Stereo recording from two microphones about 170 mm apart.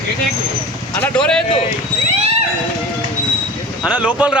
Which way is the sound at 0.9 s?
10° left (ahead or behind).